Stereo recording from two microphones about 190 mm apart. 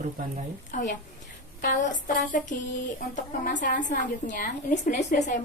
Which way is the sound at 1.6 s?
45° left (ahead or behind).